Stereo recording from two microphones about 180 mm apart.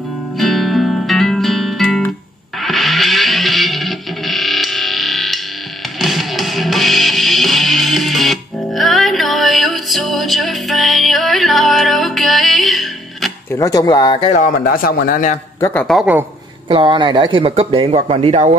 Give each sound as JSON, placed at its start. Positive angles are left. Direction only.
{"t": 0.4, "sound": "music", "side_deg": 0}
{"t": 13.5, "sound": "speech", "side_deg": 20}
{"t": 14.3, "sound": "speech", "side_deg": 50}
{"t": 15.7, "sound": "speech", "side_deg": 5}
{"t": 16.6, "sound": "speech", "side_deg": -25}